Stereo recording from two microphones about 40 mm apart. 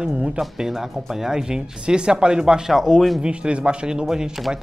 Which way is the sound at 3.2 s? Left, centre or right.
Right.